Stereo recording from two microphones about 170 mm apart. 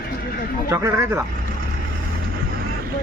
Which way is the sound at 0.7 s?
15° right (ahead or behind).